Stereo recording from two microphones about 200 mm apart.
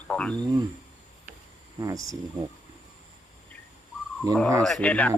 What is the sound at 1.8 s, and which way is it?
Speech, 15° right (ahead or behind).